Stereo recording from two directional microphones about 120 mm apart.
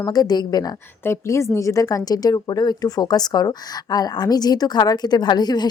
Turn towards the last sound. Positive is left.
turn(degrees=35)  # may be behind; listen again after turning